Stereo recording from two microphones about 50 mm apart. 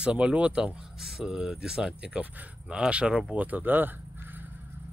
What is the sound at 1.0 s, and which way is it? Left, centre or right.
Speech, centre.